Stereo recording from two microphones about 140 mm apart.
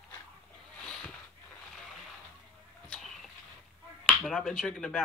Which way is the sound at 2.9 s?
Centre (ahead or behind).